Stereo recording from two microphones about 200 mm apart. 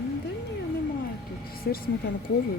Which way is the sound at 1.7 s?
50° left (ahead or behind).